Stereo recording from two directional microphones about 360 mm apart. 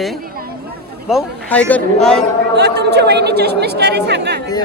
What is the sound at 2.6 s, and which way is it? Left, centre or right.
Speech, right.